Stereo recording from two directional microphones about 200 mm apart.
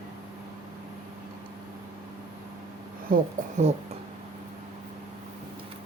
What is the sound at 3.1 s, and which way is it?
Speech, 35° right (ahead or behind).